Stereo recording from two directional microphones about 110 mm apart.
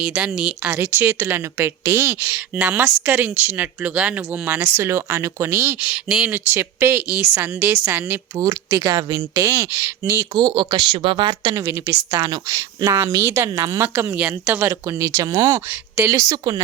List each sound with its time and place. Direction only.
0.0 s a woman's voice: 10° right (ahead or behind)
0.8 s speech: 20° right (ahead or behind)
5.8 s a woman's voice: 5° right (ahead or behind)
6.3 s a woman's voice: 20° right (ahead or behind)
8.4 s speech: 30° right (ahead or behind)
9.3 s speech: 25° right (ahead or behind)
10.3 s speech: 45° right (ahead or behind)
11.5 s speech: 25° right (ahead or behind)
13.8 s a woman's voice: 20° right (ahead or behind)
14.7 s speech: 25° right (ahead or behind)